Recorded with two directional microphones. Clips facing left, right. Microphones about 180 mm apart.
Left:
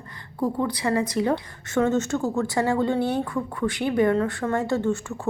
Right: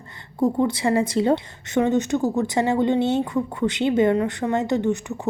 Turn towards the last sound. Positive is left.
turn(degrees=-20)  # may be behind; listen again after turning